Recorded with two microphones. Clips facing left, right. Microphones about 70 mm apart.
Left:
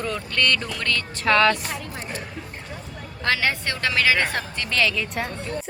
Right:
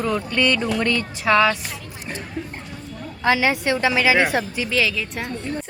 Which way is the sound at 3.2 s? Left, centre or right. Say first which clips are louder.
Right 4 dB; centre.